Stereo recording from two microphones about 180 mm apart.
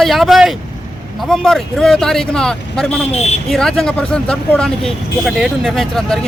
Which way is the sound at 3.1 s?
35° left (ahead or behind).